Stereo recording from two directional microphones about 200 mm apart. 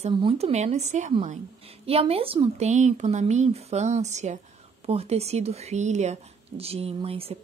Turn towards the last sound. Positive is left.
turn(degrees=-30)  # may be behind; listen again after turning